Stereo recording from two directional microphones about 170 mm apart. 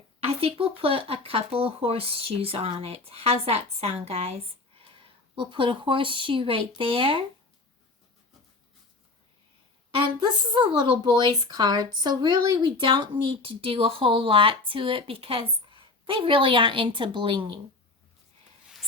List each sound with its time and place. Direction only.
0.3 s a woman's voice: 35° right (ahead or behind)
9.9 s a woman's voice: 30° right (ahead or behind)